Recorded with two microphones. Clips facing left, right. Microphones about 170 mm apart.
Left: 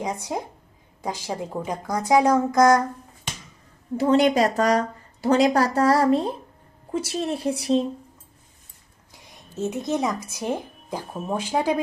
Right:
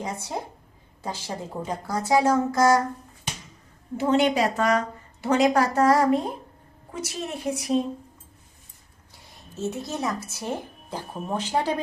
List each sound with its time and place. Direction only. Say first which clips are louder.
0.0 s a woman's voice: left 3 dB; 15° left (ahead or behind)
3.9 s a woman's voice: left 3 dB; 40° left (ahead or behind)
9.6 s a woman's voice: left 4 dB; 20° left (ahead or behind)